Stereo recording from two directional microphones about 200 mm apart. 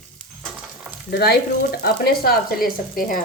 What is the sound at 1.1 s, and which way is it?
Frying, 55° left (ahead or behind).